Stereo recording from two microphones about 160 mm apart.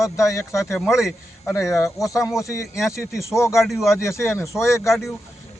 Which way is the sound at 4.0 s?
15° left (ahead or behind).